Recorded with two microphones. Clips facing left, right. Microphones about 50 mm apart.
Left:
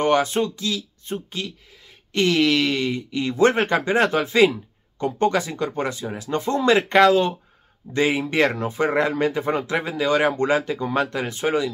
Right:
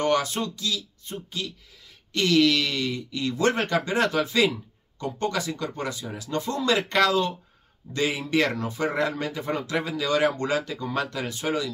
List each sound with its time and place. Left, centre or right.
0.0 s speech: left
2.1 s speech: left